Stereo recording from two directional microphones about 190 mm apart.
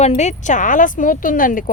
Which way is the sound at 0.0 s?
35° left (ahead or behind).